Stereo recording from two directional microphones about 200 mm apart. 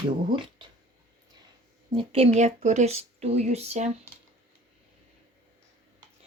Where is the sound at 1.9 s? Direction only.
25° right (ahead or behind).